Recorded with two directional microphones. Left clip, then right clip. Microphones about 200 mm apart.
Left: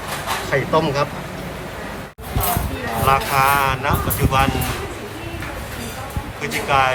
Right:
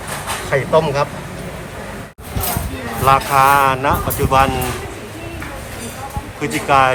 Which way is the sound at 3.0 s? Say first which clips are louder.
Right 5 dB; centre (ahead or behind).